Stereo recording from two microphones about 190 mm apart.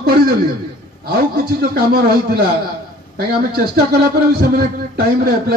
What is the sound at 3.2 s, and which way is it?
Speech, 55° right (ahead or behind).